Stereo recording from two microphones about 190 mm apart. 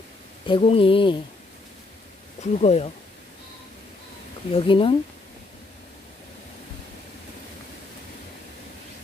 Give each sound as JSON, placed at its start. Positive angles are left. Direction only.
{"t": 0.5, "sound": "speech", "side_deg": 25}
{"t": 2.4, "sound": "speech", "side_deg": 35}
{"t": 4.5, "sound": "speech", "side_deg": 30}